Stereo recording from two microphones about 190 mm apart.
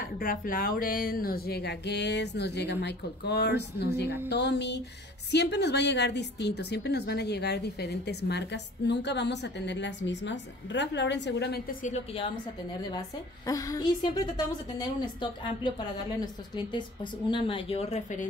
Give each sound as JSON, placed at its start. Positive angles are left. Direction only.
{"t": 0.0, "sound": "a woman's voice", "side_deg": 50}
{"t": 13.5, "sound": "a woman's voice", "side_deg": 20}